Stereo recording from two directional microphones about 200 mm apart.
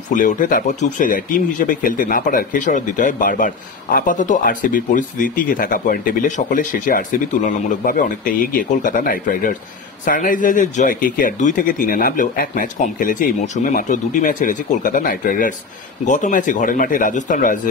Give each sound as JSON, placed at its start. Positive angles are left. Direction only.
{"t": 0.1, "sound": "speech", "side_deg": 40}